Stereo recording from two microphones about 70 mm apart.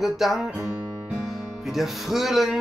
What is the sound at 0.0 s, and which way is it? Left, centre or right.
Music, centre.